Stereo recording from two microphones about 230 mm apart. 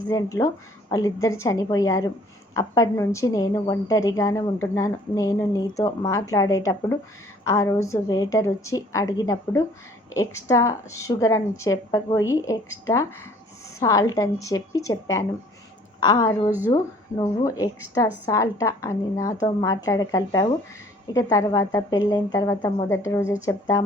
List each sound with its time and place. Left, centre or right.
0.1 s a woman's voice: centre